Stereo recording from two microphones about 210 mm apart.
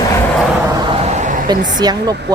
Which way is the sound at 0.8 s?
25° right (ahead or behind).